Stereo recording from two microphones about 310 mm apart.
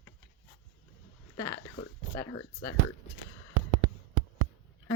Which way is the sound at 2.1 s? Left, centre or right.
Centre.